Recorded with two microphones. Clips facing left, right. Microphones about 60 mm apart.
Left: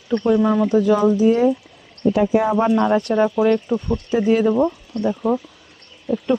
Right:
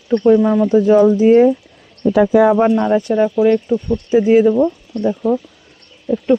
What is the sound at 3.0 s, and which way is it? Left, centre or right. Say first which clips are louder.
Speech: right 3 dB; centre.